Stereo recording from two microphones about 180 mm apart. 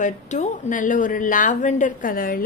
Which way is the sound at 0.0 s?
45° left (ahead or behind).